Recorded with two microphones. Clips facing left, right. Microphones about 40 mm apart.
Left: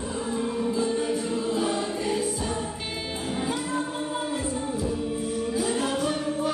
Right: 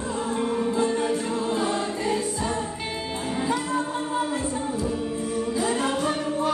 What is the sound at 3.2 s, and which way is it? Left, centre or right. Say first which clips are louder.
Music: right 3 dB; right.